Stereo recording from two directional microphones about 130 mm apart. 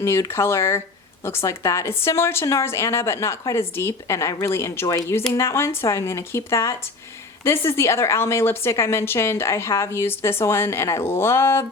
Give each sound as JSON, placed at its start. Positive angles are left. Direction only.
{"t": 0.0, "sound": "a woman's voice", "side_deg": 20}